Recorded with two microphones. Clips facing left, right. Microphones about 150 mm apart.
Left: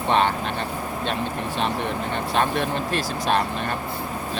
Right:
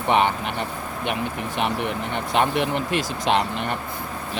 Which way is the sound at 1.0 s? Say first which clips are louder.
Right 1 dB; 15° right (ahead or behind).